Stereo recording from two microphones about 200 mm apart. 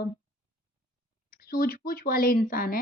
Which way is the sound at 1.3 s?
45° left (ahead or behind).